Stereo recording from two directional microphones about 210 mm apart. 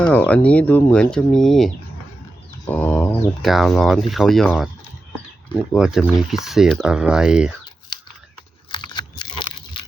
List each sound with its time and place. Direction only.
0.0 s speech: 5° left (ahead or behind)
5.7 s speech: centre (ahead or behind)
8.7 s a sound: 20° left (ahead or behind)